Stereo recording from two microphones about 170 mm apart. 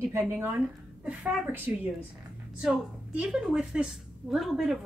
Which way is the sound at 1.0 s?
5° right (ahead or behind).